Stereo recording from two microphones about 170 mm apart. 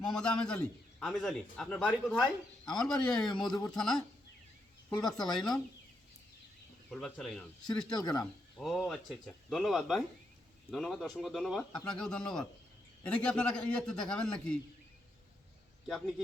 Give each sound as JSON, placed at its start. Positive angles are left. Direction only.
{"t": 0.1, "sound": "a man's voice", "side_deg": 5}
{"t": 5.0, "sound": "a man's voice", "side_deg": 5}
{"t": 6.9, "sound": "a man's voice", "side_deg": 0}
{"t": 7.9, "sound": "speech", "side_deg": 25}
{"t": 8.2, "sound": "a man's voice", "side_deg": 0}
{"t": 15.9, "sound": "a man's voice", "side_deg": 0}